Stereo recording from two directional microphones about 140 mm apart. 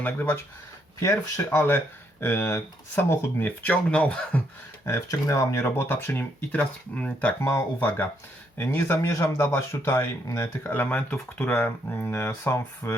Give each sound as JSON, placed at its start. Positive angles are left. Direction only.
{"t": 0.0, "sound": "speech", "side_deg": 15}
{"t": 4.9, "sound": "speech", "side_deg": 25}